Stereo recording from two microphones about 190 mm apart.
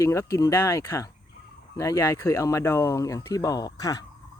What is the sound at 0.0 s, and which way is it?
Speech, 15° left (ahead or behind).